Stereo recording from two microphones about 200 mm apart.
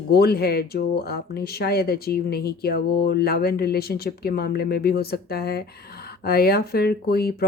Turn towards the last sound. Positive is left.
turn(degrees=50)  # may be behind; listen again after turning